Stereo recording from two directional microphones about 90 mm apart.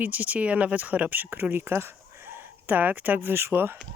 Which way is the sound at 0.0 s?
15° right (ahead or behind).